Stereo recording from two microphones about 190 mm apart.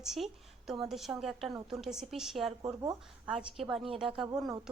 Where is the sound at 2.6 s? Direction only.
20° right (ahead or behind).